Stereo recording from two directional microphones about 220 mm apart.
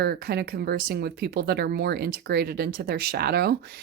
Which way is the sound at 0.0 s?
45° right (ahead or behind).